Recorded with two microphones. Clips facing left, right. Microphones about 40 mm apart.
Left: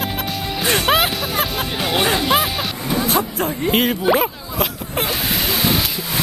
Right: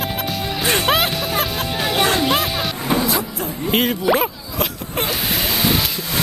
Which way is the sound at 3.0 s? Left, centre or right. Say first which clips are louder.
Left 3 dB; left.